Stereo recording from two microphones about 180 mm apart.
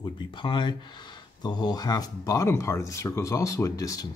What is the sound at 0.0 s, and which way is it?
Speech, 25° left (ahead or behind).